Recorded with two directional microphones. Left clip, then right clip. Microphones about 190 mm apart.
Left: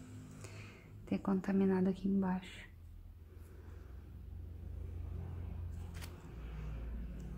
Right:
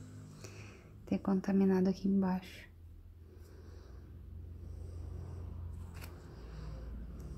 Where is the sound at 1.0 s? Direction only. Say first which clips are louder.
Right 2 dB; 15° right (ahead or behind).